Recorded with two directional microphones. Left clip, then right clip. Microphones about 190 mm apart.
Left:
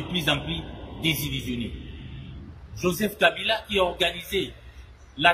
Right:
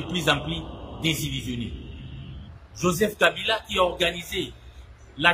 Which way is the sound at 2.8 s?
25° right (ahead or behind).